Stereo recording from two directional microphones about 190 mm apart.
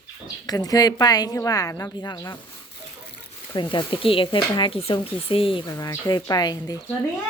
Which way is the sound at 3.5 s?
25° left (ahead or behind).